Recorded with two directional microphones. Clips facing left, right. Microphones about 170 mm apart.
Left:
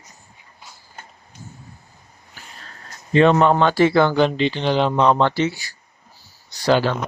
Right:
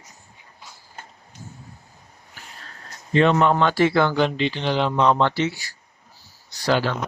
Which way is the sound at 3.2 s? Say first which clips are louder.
Left 3 dB; 40° left (ahead or behind).